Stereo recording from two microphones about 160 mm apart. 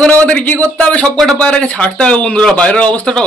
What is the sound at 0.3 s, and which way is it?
A man's voice, 10° left (ahead or behind).